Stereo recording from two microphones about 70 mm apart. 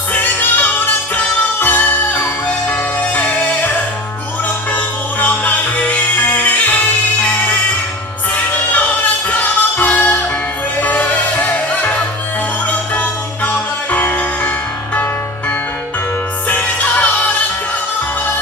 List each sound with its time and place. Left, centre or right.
0.1 s music: left
5.2 s music: left
9.3 s music: left
16.5 s music: centre